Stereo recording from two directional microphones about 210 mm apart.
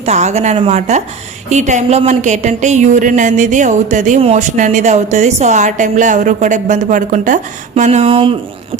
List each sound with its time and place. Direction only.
0.0 s speech: 30° right (ahead or behind)